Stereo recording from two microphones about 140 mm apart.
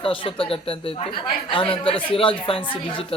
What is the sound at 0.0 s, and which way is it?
A man's voice, 40° left (ahead or behind).